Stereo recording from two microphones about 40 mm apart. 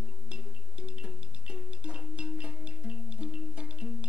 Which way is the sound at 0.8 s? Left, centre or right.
Right.